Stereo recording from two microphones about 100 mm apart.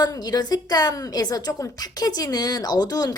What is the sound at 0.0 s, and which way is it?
A woman's voice, 40° left (ahead or behind).